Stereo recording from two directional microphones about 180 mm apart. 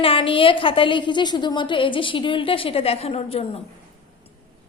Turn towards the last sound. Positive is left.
turn(degrees=35)  # may be behind; listen again after turning